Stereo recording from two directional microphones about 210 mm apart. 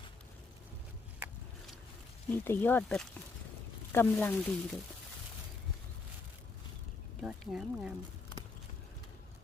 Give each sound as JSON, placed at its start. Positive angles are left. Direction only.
{"t": 2.3, "sound": "speech", "side_deg": 10}
{"t": 7.2, "sound": "speech", "side_deg": 0}